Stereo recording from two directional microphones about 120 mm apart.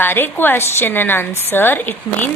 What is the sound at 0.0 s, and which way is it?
A woman's voice, 15° left (ahead or behind).